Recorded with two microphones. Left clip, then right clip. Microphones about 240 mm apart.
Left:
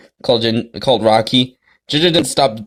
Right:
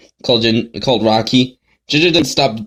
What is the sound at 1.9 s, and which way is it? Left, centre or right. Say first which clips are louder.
Speech: right 1 dB; left.